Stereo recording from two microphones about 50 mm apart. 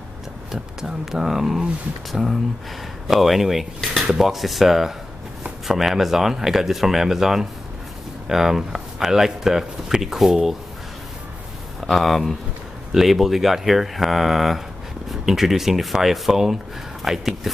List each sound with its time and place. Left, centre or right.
0.5 s speech: centre
11.8 s speech: centre